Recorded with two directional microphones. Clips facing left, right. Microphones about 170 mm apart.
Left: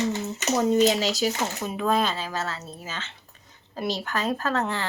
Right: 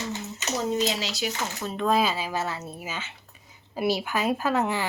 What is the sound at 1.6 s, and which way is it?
A woman's voice, 5° left (ahead or behind).